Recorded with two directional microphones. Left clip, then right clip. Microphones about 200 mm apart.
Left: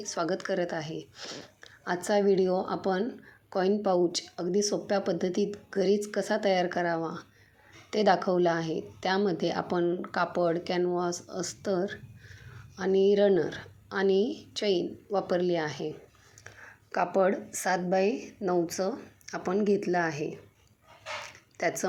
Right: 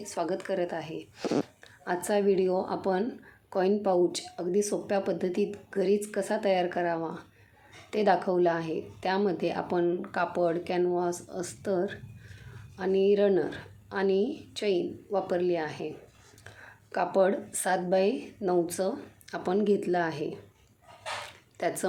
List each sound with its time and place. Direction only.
0.0 s a woman's voice: 15° left (ahead or behind)
16.9 s a woman's voice: 10° left (ahead or behind)
21.6 s a woman's voice: 10° left (ahead or behind)